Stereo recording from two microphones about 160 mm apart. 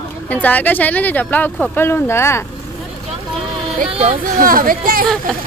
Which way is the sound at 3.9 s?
40° right (ahead or behind).